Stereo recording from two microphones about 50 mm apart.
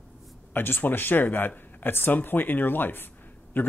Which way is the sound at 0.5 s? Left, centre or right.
Left.